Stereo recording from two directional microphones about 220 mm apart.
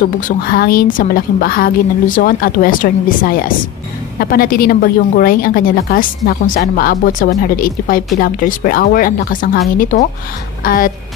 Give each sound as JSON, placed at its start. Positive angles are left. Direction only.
{"t": 0.4, "sound": "a woman's voice", "side_deg": 45}